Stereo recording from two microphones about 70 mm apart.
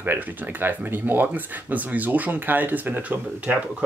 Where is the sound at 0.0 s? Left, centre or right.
Right.